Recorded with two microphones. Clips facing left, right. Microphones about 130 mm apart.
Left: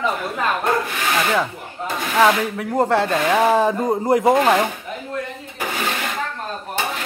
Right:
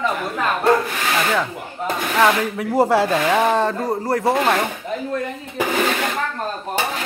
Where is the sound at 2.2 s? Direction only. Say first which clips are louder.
Even; centre (ahead or behind); by 4.6 s 15° left (ahead or behind).